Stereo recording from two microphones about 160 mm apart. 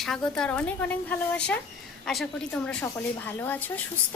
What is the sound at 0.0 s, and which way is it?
A woman's voice, 5° left (ahead or behind).